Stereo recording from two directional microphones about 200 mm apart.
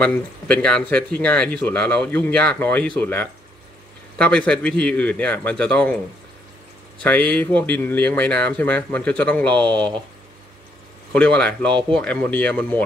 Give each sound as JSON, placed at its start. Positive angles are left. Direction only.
{"t": 0.0, "sound": "speech", "side_deg": 5}
{"t": 7.0, "sound": "speech", "side_deg": 10}
{"t": 11.1, "sound": "speech", "side_deg": 5}